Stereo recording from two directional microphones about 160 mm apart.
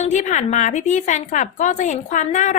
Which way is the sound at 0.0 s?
45° left (ahead or behind).